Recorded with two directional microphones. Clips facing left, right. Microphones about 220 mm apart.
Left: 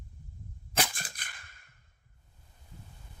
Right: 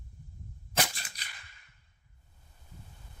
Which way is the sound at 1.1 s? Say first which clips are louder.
Left 1 dB; 50° left (ahead or behind).